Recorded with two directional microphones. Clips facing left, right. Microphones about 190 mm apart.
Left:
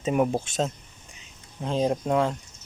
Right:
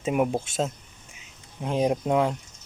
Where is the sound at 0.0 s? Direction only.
5° right (ahead or behind).